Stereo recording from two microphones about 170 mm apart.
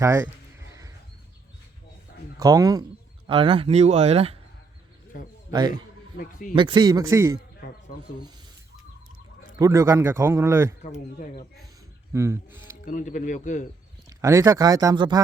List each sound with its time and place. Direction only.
0.0 s a man's voice: 15° right (ahead or behind)
0.7 s horse: 20° right (ahead or behind)
2.4 s speech: 20° right (ahead or behind)
3.2 s speech: 30° right (ahead or behind)
5.5 s a man's voice: 25° right (ahead or behind)
7.9 s rub: 55° left (ahead or behind)
9.6 s a man's voice: 20° right (ahead or behind)
10.8 s speech: 45° left (ahead or behind)
12.1 s a man's voice: 15° right (ahead or behind)
12.8 s speech: 50° left (ahead or behind)
14.1 s speech: 20° right (ahead or behind)